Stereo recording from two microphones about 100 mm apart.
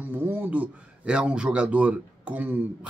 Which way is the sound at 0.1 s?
20° right (ahead or behind).